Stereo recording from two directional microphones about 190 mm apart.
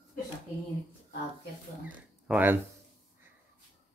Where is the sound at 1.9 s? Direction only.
10° right (ahead or behind).